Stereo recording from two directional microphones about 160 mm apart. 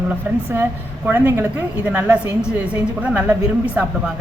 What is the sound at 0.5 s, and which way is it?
A woman's voice, 15° right (ahead or behind).